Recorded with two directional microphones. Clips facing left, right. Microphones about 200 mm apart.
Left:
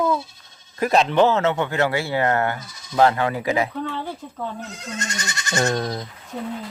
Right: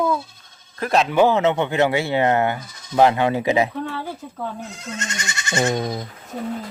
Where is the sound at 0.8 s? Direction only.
Centre (ahead or behind); by 3.7 s 20° right (ahead or behind).